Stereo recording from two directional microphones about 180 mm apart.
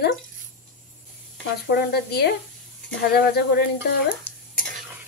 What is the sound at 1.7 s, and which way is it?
Speech, 65° left (ahead or behind).